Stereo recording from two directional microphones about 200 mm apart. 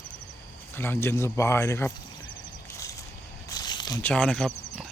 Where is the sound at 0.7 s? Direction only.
10° left (ahead or behind).